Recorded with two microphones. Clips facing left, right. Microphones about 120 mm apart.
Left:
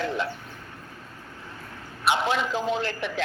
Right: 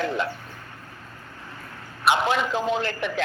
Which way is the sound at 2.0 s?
55° right (ahead or behind).